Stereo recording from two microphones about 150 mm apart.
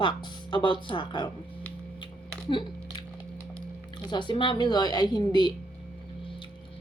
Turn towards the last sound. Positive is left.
turn(degrees=30)  # may be behind; listen again after turning